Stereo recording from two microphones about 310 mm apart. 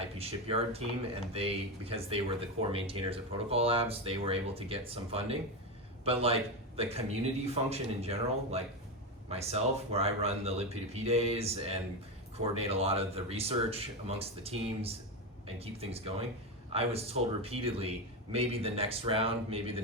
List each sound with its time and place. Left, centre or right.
0.2 s a man's voice: centre